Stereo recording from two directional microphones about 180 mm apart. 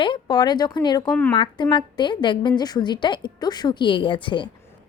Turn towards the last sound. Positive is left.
turn(degrees=25)  # may be behind; listen again after turning